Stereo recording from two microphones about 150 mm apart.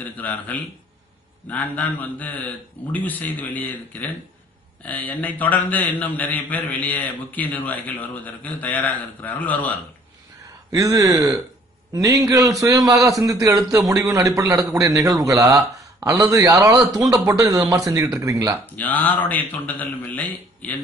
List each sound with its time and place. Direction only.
0.0 s a man's voice: 10° left (ahead or behind)
10.7 s a man's voice: 20° right (ahead or behind)
18.8 s a man's voice: 10° left (ahead or behind)